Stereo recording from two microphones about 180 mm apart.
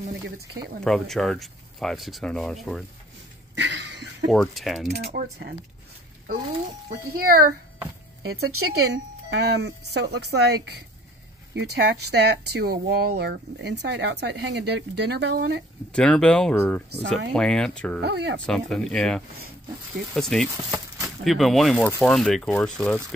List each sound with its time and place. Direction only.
0.8 s speech: centre (ahead or behind)
3.5 s a sound: 80° right
4.3 s speech: centre (ahead or behind)
5.0 s speech: 60° right (ahead or behind)
6.9 s speech: 55° right (ahead or behind)
8.3 s speech: 65° right (ahead or behind)
15.9 s speech: 5° left (ahead or behind)
18.0 s speech: 70° right (ahead or behind)
18.4 s speech: 5° left (ahead or behind)